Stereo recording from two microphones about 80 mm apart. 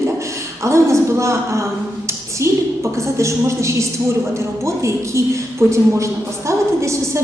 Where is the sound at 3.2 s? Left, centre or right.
Right.